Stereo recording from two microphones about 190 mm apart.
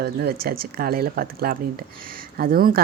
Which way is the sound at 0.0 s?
55° right (ahead or behind).